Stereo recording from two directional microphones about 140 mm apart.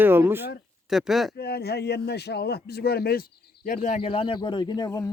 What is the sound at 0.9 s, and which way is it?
Speech, centre (ahead or behind).